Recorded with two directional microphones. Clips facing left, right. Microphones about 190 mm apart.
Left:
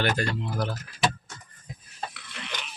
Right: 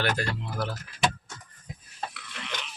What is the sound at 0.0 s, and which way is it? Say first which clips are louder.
Speech: left 2 dB; 5° right (ahead or behind).